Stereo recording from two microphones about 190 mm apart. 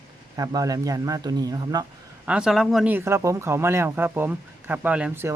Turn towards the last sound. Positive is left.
turn(degrees=-10)  # may be behind; listen again after turning